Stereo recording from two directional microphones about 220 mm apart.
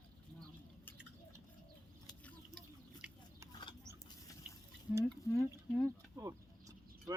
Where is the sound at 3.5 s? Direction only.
20° left (ahead or behind).